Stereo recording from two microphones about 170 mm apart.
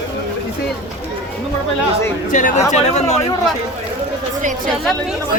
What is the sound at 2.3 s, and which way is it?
Speech, 50° left (ahead or behind).